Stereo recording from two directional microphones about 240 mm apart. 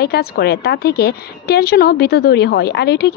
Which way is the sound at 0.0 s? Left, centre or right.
Left.